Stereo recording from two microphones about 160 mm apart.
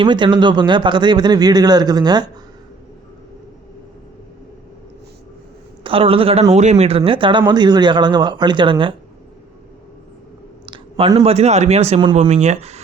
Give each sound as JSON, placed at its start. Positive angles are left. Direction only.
{"t": 0.0, "sound": "a man's voice", "side_deg": -30}
{"t": 5.8, "sound": "a man's voice", "side_deg": -35}
{"t": 10.7, "sound": "a sound", "side_deg": -35}
{"t": 11.2, "sound": "speech", "side_deg": -40}